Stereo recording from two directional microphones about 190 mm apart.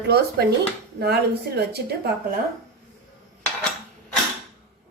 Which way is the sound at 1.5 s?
60° right (ahead or behind).